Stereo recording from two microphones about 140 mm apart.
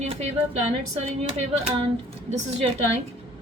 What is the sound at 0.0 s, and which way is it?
Speech, 50° right (ahead or behind).